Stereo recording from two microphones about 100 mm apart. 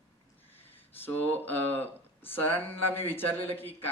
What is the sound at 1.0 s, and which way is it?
Speech, 20° left (ahead or behind).